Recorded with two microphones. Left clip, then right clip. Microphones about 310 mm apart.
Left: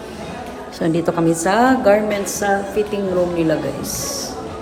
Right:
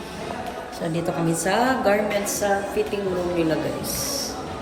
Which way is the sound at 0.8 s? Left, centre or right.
Left.